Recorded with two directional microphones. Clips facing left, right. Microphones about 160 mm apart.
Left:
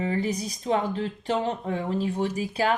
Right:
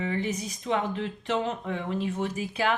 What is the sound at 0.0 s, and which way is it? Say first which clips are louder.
Speech: left 3 dB; 35° left (ahead or behind).